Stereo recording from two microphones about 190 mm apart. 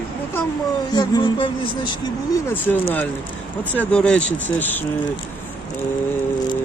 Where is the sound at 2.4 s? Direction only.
10° left (ahead or behind).